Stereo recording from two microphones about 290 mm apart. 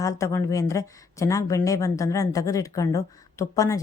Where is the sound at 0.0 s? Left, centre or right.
Centre.